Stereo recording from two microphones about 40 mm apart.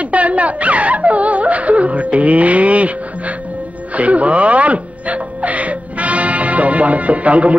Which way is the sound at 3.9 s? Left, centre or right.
Right.